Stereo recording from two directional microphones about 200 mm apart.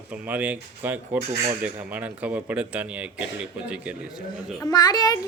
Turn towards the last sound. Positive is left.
turn(degrees=20)  # may be behind; listen again after turning